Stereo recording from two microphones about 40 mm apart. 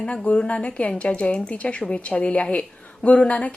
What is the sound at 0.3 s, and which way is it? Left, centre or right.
A woman's voice, left.